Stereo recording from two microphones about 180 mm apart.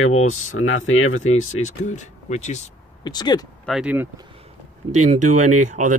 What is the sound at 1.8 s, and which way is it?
Speech, 40° left (ahead or behind).